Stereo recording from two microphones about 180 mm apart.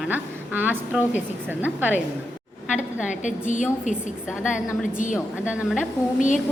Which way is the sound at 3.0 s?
45° left (ahead or behind).